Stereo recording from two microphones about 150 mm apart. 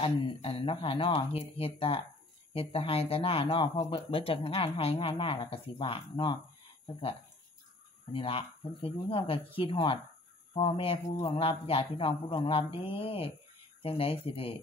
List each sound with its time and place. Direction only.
0.0 s speech: 40° left (ahead or behind)
8.1 s speech: 35° left (ahead or behind)